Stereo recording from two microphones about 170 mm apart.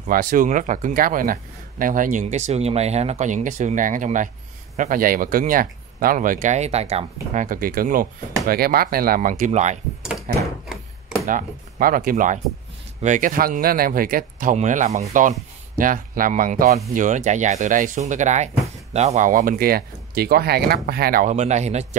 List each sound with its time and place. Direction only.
0.0 s speech: 55° right (ahead or behind)
10.3 s speech: 55° right (ahead or behind)